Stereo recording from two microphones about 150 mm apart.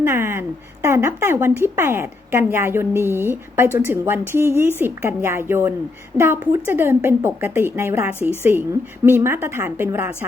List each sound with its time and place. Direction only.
0.0 s speech: 15° right (ahead or behind)